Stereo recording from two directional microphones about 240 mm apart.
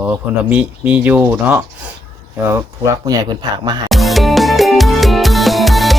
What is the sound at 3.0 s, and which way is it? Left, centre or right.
Speech, centre.